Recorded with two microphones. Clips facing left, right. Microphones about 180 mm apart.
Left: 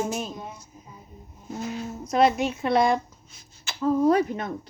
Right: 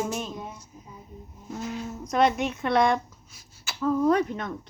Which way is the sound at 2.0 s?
5° left (ahead or behind).